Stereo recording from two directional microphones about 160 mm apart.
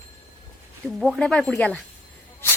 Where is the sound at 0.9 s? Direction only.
Centre (ahead or behind).